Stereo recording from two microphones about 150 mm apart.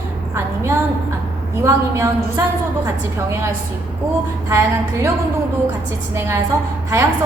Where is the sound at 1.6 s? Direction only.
20° right (ahead or behind).